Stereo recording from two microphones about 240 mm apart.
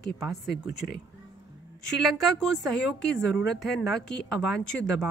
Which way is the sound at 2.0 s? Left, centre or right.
Centre.